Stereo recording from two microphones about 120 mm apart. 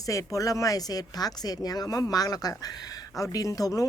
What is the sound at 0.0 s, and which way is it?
Speech, 25° left (ahead or behind).